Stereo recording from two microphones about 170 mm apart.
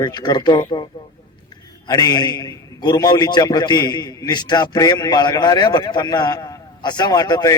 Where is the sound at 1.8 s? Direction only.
25° left (ahead or behind).